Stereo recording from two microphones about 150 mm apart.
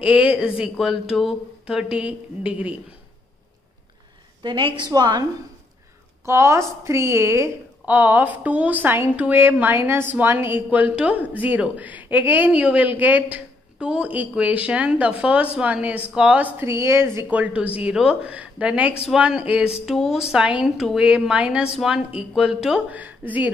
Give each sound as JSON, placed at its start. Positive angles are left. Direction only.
{"t": 0.0, "sound": "a woman's voice", "side_deg": -10}
{"t": 4.4, "sound": "a woman's voice", "side_deg": -30}
{"t": 6.2, "sound": "a woman's voice", "side_deg": -20}